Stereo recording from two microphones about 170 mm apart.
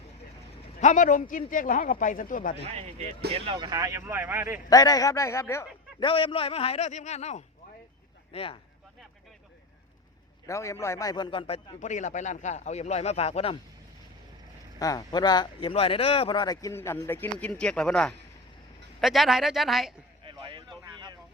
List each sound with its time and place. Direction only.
0.8 s a man's voice: 45° left (ahead or behind)
3.3 s speech: 35° right (ahead or behind)
3.7 s speech: 20° right (ahead or behind)
4.7 s a man's voice: 20° left (ahead or behind)
6.0 s a man's voice: 30° left (ahead or behind)
10.4 s a man's voice: 15° left (ahead or behind); by 13.6 s 35° left (ahead or behind)
14.8 s speech: 20° left (ahead or behind); by 19.9 s centre (ahead or behind)
20.2 s a sound: 30° right (ahead or behind)